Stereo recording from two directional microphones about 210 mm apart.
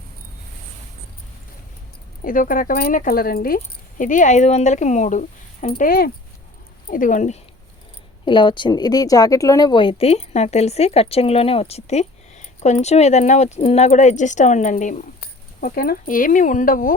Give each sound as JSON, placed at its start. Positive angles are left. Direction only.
{"t": 2.2, "sound": "speech", "side_deg": 40}
{"t": 8.2, "sound": "speech", "side_deg": 20}